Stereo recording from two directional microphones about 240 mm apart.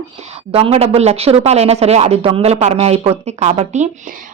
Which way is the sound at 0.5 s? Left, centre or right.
Right.